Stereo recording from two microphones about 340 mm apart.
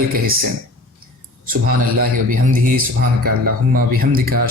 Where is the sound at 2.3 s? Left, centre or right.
Right.